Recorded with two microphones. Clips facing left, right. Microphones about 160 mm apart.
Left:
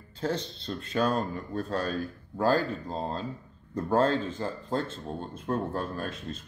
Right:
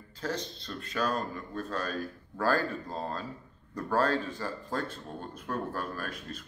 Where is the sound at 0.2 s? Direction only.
30° left (ahead or behind).